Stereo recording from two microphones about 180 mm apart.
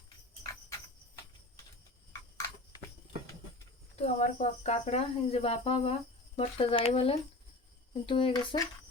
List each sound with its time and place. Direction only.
4.0 s speech: 40° left (ahead or behind)